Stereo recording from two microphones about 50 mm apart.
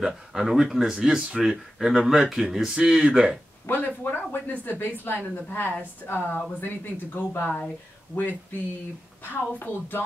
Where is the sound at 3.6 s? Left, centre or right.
Left.